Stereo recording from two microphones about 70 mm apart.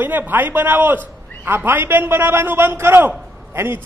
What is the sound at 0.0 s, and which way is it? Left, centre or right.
A man's voice, right.